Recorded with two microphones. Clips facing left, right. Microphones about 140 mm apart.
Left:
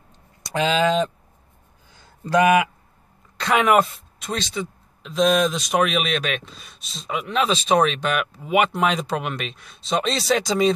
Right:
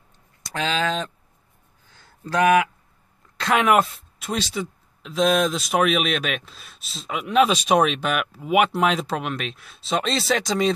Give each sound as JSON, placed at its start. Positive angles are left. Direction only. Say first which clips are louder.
{"t": 0.4, "sound": "speech", "louder": "left 5 dB", "side_deg": 15}
{"t": 1.9, "sound": "a sound", "louder": "left 5 dB", "side_deg": 15}
{"t": 3.3, "sound": "speech", "louder": "left 1 dB", "side_deg": 0}